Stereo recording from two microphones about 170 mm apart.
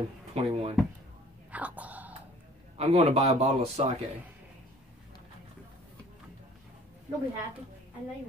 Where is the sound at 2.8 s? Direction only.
35° right (ahead or behind).